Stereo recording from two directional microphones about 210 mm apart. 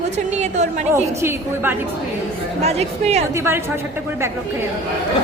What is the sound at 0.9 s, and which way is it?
Speech, 15° right (ahead or behind).